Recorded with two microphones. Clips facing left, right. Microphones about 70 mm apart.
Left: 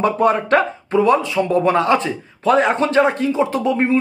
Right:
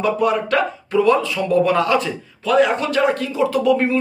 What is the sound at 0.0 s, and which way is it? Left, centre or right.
A man's voice, left.